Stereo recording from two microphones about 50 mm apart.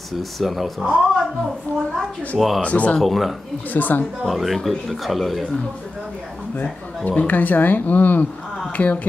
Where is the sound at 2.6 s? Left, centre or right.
Left.